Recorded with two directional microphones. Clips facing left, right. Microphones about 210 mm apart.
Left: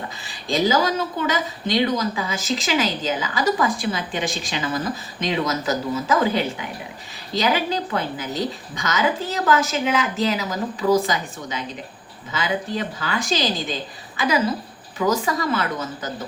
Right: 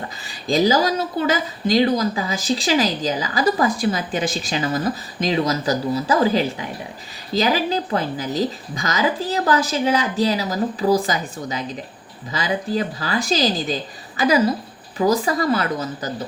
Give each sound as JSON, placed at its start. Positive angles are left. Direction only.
{"t": 0.3, "sound": "a woman's voice", "side_deg": -40}